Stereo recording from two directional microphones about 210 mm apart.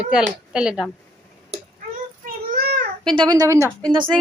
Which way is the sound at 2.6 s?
45° right (ahead or behind).